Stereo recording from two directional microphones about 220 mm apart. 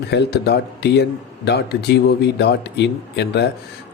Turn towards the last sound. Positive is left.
turn(degrees=50)  # may be behind; listen again after turning